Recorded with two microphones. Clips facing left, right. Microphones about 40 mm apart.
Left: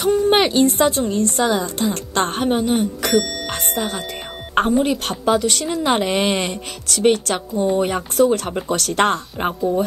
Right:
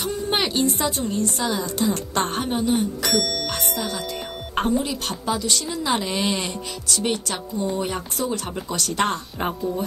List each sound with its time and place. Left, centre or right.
0.0 s a woman's voice: left
3.4 s music: left
4.6 s a woman's voice: left
7.5 s speech: left
7.8 s a woman's voice: left